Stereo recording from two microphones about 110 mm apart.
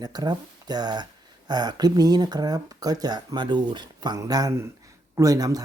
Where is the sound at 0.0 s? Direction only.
40° right (ahead or behind).